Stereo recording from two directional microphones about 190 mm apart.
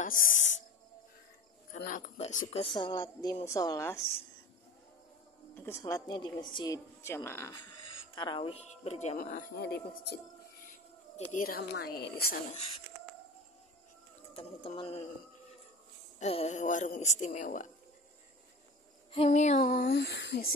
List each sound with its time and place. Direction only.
0.0 s music: 45° left (ahead or behind)
1.7 s speech: 45° left (ahead or behind); by 4.0 s 15° left (ahead or behind)
5.5 s a woman's voice: 15° left (ahead or behind)
8.1 s a woman's voice: 25° left (ahead or behind); by 9.5 s 45° left (ahead or behind)
11.3 s speech: 50° left (ahead or behind)
14.3 s speech: 30° left (ahead or behind)
16.2 s a woman's voice: 35° left (ahead or behind)
19.1 s a woman's voice: 35° left (ahead or behind)
19.6 s speech: 55° left (ahead or behind)